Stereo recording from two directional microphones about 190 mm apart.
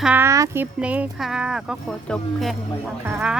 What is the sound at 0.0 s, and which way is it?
Speech, 10° right (ahead or behind).